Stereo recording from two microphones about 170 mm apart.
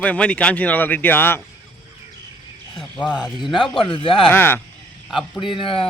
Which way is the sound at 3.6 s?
30° left (ahead or behind).